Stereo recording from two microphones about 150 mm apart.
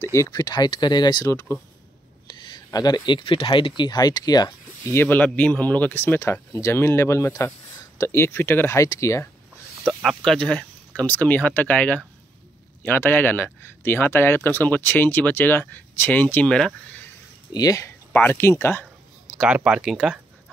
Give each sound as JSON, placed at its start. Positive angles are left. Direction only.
{"t": 0.0, "sound": "speech", "side_deg": 20}
{"t": 2.2, "sound": "speech", "side_deg": 30}
{"t": 9.8, "sound": "speech", "side_deg": 5}
{"t": 17.5, "sound": "a sound", "side_deg": 25}
{"t": 19.3, "sound": "speech", "side_deg": -10}